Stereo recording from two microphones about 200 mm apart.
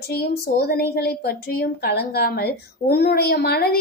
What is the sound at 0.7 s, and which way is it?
A woman's voice, 50° left (ahead or behind).